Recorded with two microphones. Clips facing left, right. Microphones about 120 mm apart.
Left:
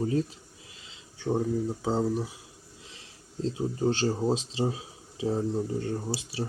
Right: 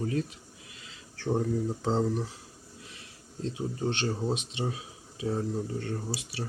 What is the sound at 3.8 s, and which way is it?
Speech, 35° left (ahead or behind).